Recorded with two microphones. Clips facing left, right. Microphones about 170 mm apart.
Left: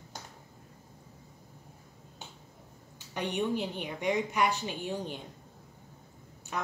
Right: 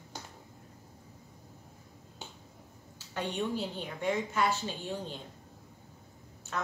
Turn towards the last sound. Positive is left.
turn(degrees=10)  # may be behind; listen again after turning